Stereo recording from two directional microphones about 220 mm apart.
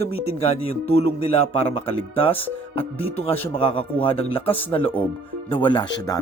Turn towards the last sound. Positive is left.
turn(degrees=20)  # may be behind; listen again after turning